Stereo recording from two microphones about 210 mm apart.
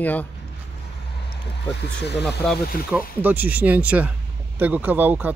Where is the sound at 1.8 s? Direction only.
55° left (ahead or behind).